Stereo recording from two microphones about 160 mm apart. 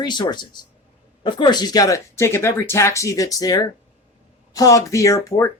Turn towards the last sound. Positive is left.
turn(degrees=20)  # may be behind; listen again after turning